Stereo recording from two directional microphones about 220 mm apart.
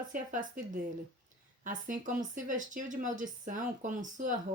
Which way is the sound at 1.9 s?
35° right (ahead or behind).